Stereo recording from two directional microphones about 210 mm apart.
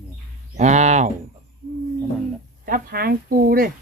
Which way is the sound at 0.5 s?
35° right (ahead or behind).